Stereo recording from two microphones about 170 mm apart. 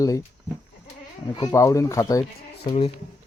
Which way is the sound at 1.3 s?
20° left (ahead or behind).